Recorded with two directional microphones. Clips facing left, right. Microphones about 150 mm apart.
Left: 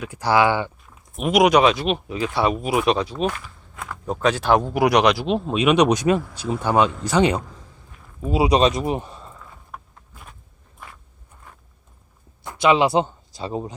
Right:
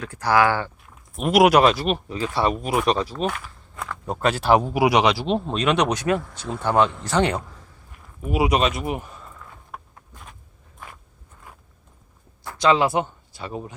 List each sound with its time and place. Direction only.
0.2 s speech: 25° left (ahead or behind)
1.1 s speech: centre (ahead or behind); by 7.4 s 15° left (ahead or behind)
8.2 s speech: 30° left (ahead or behind)
12.4 s a sound: 20° left (ahead or behind)
12.9 s speech: 30° left (ahead or behind)